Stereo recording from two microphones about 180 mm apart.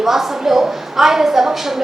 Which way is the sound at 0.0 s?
Centre (ahead or behind).